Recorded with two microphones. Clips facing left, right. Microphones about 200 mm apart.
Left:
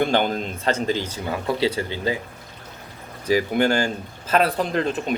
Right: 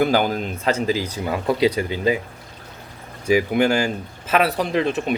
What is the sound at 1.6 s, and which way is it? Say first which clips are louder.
Speech: right 4 dB; 15° right (ahead or behind).